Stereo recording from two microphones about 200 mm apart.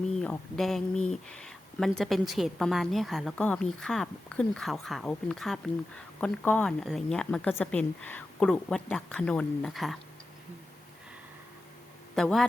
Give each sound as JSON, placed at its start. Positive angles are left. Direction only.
{"t": 0.2, "sound": "speech", "side_deg": 5}
{"t": 12.1, "sound": "speech", "side_deg": 0}